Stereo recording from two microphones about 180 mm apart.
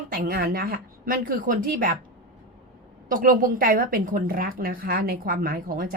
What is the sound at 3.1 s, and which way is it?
A woman's voice, 50° right (ahead or behind).